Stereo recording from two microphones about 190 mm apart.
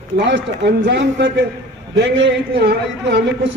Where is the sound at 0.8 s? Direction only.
70° right (ahead or behind).